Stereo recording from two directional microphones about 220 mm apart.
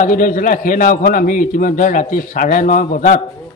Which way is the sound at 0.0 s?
35° left (ahead or behind).